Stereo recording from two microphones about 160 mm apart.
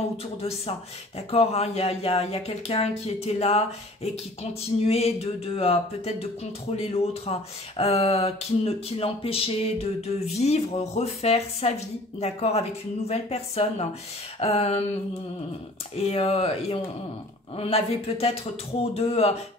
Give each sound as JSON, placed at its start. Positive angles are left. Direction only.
{"t": 0.4, "sound": "speech", "side_deg": 40}
{"t": 16.0, "sound": "speech", "side_deg": 35}